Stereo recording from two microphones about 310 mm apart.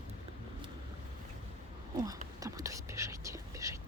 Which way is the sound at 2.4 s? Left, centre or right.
Centre.